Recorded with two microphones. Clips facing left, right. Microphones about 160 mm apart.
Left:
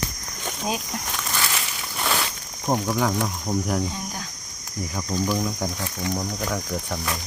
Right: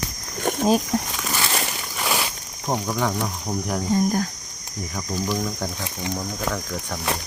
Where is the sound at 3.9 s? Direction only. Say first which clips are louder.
Right 13 dB; 50° right (ahead or behind).